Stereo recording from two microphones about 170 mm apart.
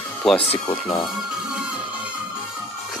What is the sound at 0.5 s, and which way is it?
Speech, 30° left (ahead or behind).